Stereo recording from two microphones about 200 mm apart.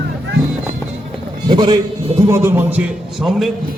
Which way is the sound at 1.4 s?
20° right (ahead or behind).